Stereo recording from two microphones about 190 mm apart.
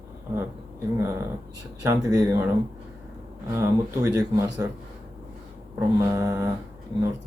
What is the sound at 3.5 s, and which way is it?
Speech, 15° right (ahead or behind).